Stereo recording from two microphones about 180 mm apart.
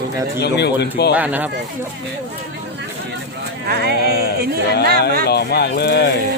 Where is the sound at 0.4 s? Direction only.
70° left (ahead or behind).